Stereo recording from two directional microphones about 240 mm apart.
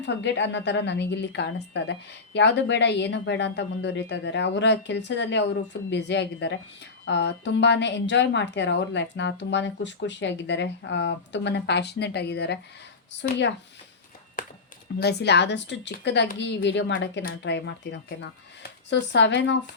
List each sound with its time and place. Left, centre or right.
0.0 s a woman's voice: left
14.9 s a woman's voice: left